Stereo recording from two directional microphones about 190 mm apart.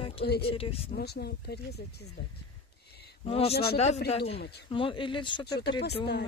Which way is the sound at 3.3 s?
30° left (ahead or behind).